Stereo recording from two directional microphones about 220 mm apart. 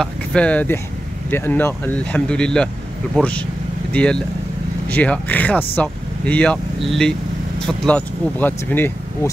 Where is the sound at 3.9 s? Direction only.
5° left (ahead or behind).